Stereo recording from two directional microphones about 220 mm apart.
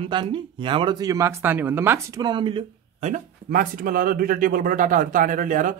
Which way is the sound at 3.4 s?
40° right (ahead or behind).